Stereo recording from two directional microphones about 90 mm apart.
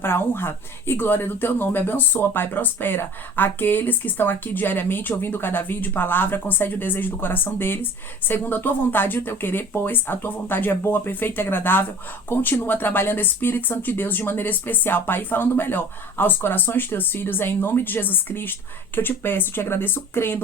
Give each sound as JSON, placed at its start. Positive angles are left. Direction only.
{"t": 0.0, "sound": "speech", "side_deg": 25}